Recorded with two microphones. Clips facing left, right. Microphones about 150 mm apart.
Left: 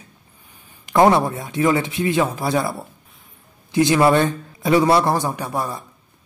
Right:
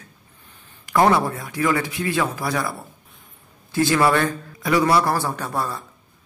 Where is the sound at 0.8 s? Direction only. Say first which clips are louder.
Left 3 dB; 20° left (ahead or behind).